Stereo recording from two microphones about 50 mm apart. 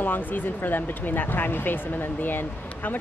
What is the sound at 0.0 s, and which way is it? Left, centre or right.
Speech, left.